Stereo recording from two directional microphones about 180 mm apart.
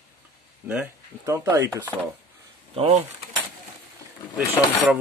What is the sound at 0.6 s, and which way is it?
Speech, 10° right (ahead or behind).